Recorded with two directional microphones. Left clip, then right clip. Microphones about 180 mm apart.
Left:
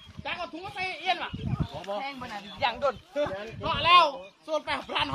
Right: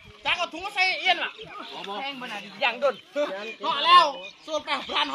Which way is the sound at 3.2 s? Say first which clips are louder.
Right 2 dB; 20° right (ahead or behind).